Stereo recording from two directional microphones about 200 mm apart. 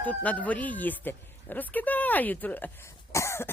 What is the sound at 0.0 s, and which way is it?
A woman's voice, 5° left (ahead or behind).